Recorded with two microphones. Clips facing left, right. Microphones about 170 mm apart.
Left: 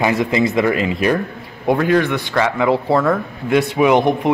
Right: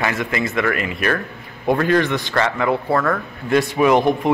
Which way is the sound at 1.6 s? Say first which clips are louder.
Left 2 dB; 10° left (ahead or behind).